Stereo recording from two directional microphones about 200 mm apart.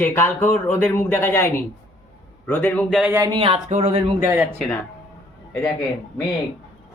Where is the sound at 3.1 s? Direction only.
15° right (ahead or behind).